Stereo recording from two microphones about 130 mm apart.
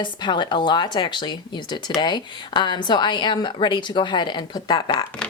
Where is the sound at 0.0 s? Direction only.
35° left (ahead or behind).